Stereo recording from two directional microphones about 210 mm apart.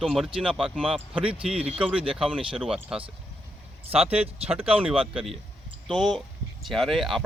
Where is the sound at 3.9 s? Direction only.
30° right (ahead or behind).